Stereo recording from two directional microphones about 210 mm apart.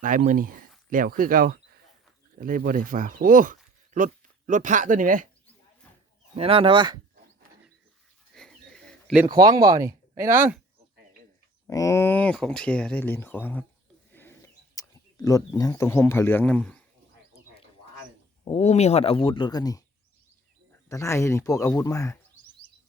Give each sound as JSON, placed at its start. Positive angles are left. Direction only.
{"t": 0.0, "sound": "speech", "side_deg": -40}
{"t": 6.3, "sound": "speech", "side_deg": -25}
{"t": 8.3, "sound": "a sound", "side_deg": 5}
{"t": 9.1, "sound": "speech", "side_deg": -20}
{"t": 11.7, "sound": "speech", "side_deg": 15}
{"t": 14.1, "sound": "a sound", "side_deg": 10}
{"t": 18.4, "sound": "speech", "side_deg": 30}
{"t": 20.9, "sound": "speech", "side_deg": 15}